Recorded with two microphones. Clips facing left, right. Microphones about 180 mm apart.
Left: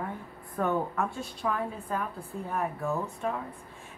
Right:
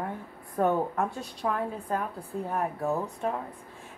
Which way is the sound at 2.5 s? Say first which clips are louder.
Right 2 dB; 35° right (ahead or behind).